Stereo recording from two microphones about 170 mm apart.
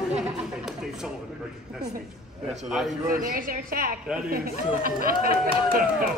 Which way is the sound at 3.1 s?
50° right (ahead or behind).